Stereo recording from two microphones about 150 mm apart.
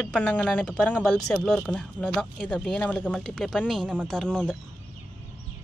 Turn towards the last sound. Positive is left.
turn(degrees=5)  # may be behind; listen again after turning